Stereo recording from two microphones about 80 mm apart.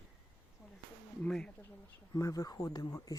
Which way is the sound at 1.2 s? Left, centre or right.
Centre.